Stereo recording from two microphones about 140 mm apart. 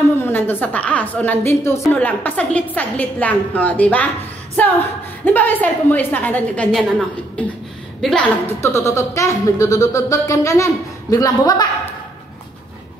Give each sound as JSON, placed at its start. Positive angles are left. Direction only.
{"t": 0.2, "sound": "a woman's voice", "side_deg": 15}
{"t": 8.6, "sound": "music", "side_deg": 20}